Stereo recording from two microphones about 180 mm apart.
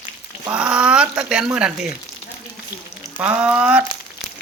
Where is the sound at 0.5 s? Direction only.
5° right (ahead or behind).